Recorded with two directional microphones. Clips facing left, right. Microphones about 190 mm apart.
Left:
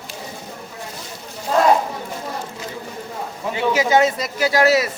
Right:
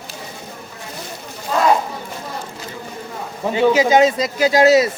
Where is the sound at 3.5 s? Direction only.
20° right (ahead or behind).